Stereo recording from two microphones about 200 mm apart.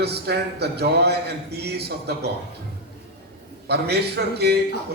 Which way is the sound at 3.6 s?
55° right (ahead or behind).